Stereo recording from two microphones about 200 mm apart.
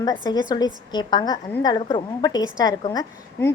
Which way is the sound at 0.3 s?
20° left (ahead or behind).